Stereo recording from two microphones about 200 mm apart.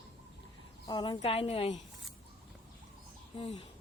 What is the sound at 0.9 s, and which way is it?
Speech, 20° left (ahead or behind).